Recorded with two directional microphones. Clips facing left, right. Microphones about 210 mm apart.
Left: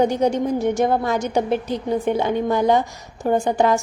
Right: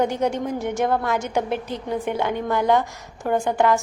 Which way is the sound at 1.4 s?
40° left (ahead or behind).